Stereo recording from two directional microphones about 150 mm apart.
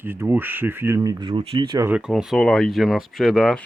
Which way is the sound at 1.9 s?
5° right (ahead or behind).